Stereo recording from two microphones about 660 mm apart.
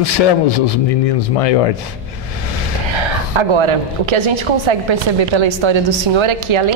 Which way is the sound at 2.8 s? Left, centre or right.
Right.